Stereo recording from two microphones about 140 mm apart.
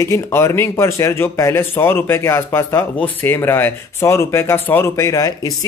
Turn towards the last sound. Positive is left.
turn(degrees=25)  # may be behind; listen again after turning